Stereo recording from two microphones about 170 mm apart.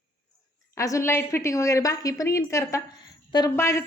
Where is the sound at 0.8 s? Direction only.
15° left (ahead or behind).